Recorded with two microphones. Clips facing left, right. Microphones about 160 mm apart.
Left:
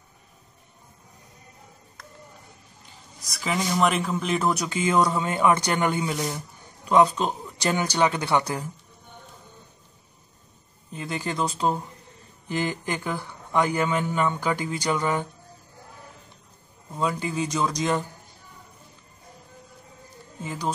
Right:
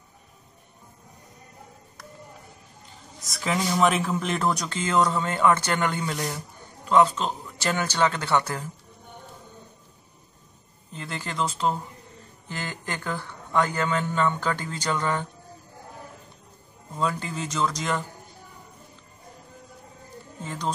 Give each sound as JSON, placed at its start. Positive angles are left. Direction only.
{"t": 3.3, "sound": "speech", "side_deg": 0}
{"t": 10.9, "sound": "speech", "side_deg": 15}
{"t": 17.0, "sound": "speech", "side_deg": 15}
{"t": 20.4, "sound": "speech", "side_deg": 5}